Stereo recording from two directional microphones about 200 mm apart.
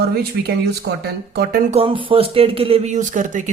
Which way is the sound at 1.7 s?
25° right (ahead or behind).